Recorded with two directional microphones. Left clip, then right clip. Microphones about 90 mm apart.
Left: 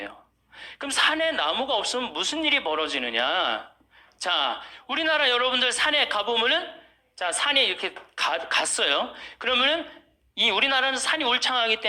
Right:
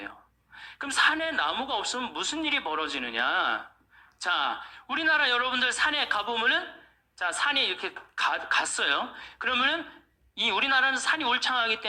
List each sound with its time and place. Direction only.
0.5 s speech: 30° left (ahead or behind)